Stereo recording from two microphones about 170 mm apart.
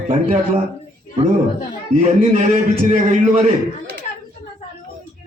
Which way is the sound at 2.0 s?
45° right (ahead or behind).